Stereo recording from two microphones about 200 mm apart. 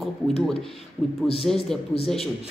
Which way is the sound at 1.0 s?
5° left (ahead or behind).